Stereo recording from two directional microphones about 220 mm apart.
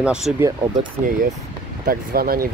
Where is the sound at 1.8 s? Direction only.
40° right (ahead or behind).